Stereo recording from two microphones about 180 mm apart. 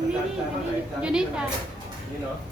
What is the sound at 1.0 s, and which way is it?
Speech, 5° right (ahead or behind).